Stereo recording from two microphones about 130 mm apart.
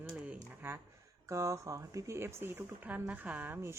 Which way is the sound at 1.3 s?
25° right (ahead or behind).